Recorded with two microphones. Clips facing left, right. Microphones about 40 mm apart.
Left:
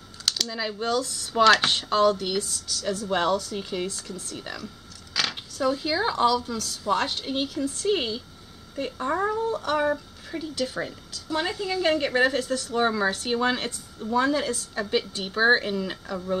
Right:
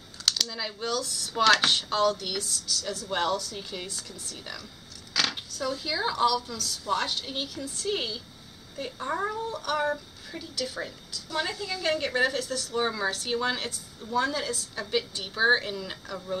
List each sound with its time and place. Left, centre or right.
0.2 s typing: centre
0.5 s speech: centre
1.3 s a woman's voice: centre
1.7 s speech: left
4.4 s a woman's voice: centre
5.1 s a sound: centre
5.6 s a woman's voice: centre
9.5 s a woman's voice: left